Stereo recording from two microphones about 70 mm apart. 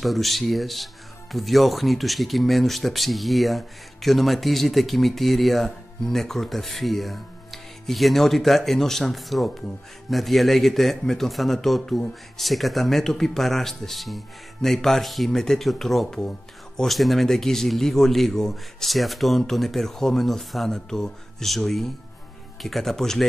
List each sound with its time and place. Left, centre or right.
0.0 s speech: centre